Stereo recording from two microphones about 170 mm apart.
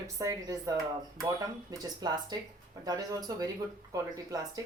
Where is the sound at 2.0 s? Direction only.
25° right (ahead or behind).